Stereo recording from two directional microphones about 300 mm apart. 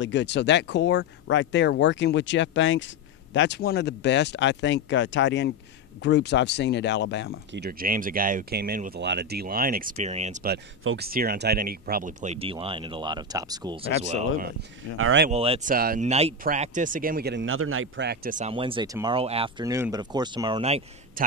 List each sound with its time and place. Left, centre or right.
0.0 s speech: left
7.5 s speech: right
10.8 s speech: right
11.1 s speech: right; by 14.2 s centre
15.0 s speech: right
15.2 s speech: centre